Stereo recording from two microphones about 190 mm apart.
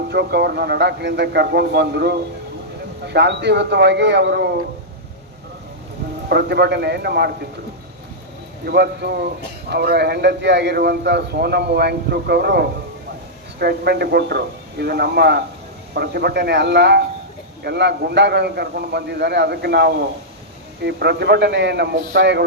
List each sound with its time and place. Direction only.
0.1 s a man's voice: 60° right (ahead or behind)
6.2 s a man's voice: 60° right (ahead or behind)
8.6 s a man's voice: 55° right (ahead or behind)